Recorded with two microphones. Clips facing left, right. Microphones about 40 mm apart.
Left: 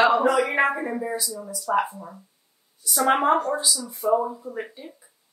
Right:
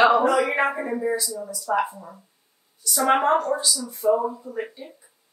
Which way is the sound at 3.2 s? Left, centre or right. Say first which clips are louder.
Even; centre.